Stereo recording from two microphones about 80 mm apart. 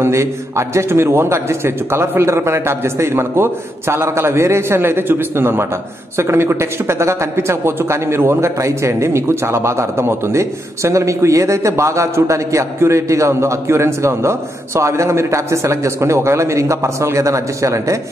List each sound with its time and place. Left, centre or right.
0.0 s speech: right